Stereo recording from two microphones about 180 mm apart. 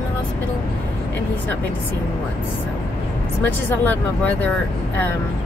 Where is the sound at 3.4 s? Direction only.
10° left (ahead or behind).